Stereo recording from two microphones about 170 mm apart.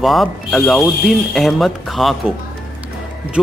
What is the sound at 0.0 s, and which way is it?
Speech, centre (ahead or behind).